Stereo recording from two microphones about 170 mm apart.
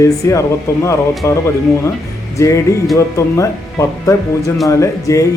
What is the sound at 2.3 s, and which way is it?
Music, 20° left (ahead or behind).